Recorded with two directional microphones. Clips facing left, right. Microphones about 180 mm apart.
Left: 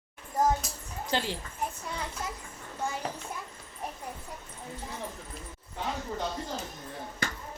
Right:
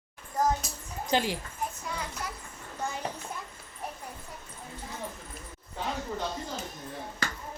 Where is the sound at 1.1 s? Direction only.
15° right (ahead or behind).